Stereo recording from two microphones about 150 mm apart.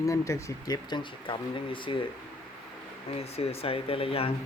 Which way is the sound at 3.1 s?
40° left (ahead or behind).